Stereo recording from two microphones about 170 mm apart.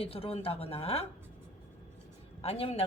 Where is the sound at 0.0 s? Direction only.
35° left (ahead or behind).